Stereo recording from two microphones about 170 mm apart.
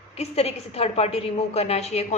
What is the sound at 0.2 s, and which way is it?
A woman's voice, 35° left (ahead or behind).